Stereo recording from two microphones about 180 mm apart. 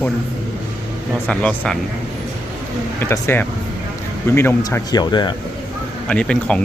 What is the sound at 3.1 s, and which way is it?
Speech, 10° left (ahead or behind).